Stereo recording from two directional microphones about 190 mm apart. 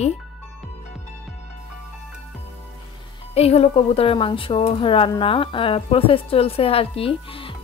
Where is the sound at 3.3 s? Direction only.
30° left (ahead or behind).